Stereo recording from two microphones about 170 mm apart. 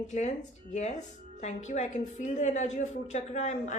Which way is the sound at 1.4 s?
45° left (ahead or behind).